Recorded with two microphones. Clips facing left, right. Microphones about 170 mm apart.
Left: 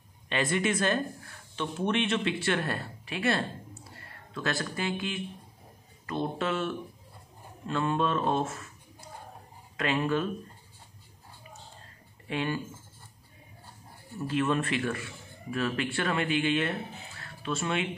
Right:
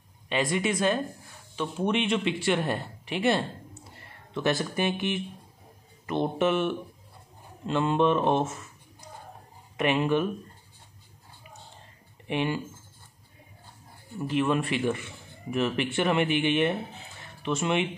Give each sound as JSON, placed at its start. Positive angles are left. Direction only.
{"t": 0.3, "sound": "speech", "side_deg": -15}
{"t": 12.3, "sound": "speech", "side_deg": -20}
{"t": 14.1, "sound": "speech", "side_deg": -15}
{"t": 17.2, "sound": "music", "side_deg": -20}